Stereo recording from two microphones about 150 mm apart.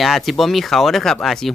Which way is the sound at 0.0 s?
Centre (ahead or behind).